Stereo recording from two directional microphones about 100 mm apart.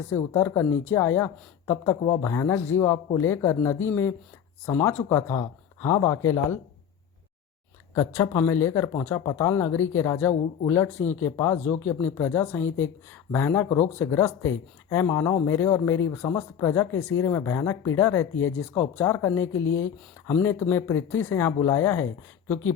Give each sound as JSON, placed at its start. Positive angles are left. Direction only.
{"t": 0.1, "sound": "speech", "side_deg": 25}
{"t": 7.9, "sound": "speech", "side_deg": 35}